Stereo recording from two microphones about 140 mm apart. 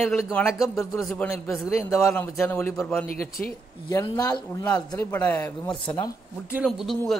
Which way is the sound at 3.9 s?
25° left (ahead or behind).